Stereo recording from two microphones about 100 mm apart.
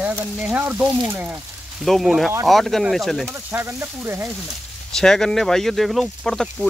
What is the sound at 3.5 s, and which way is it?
Speech, 25° right (ahead or behind).